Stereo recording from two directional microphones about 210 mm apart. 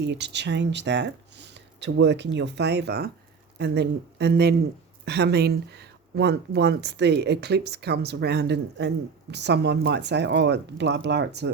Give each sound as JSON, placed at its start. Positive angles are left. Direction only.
{"t": 0.0, "sound": "speech", "side_deg": -55}